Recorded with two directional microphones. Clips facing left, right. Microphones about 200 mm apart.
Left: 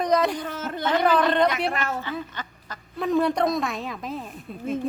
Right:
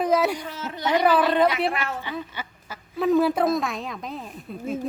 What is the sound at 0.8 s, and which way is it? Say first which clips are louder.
Speech: right 1 dB; 10° right (ahead or behind).